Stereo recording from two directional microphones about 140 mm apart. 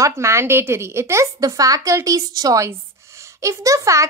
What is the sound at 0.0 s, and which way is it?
A woman's voice, 20° right (ahead or behind).